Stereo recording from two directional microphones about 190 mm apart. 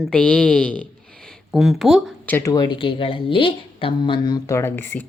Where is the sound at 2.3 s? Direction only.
20° left (ahead or behind).